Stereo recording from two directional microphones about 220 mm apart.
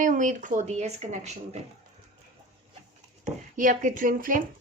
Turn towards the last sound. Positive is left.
turn(degrees=-40)  # may be behind; listen again after turning